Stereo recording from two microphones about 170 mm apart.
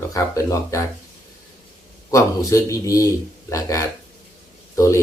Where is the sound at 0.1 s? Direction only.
20° left (ahead or behind).